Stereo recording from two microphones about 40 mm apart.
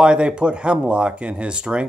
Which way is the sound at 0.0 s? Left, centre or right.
Right.